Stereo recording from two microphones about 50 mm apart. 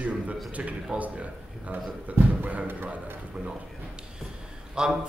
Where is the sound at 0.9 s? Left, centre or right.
Centre.